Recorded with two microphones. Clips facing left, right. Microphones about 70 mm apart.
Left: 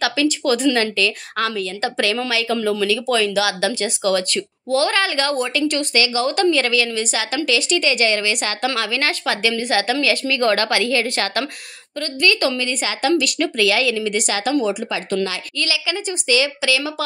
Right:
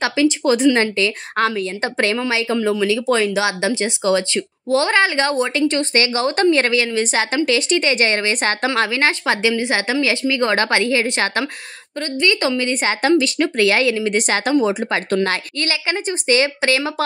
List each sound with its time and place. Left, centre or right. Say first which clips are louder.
0.0 s speech: right 2 dB; right